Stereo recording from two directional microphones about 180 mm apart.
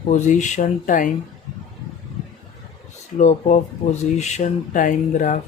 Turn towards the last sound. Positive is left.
turn(degrees=45)  # may be behind; listen again after turning